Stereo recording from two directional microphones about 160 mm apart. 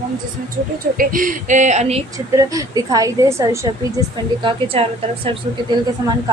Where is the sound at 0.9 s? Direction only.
60° right (ahead or behind); by 2.0 s 45° right (ahead or behind).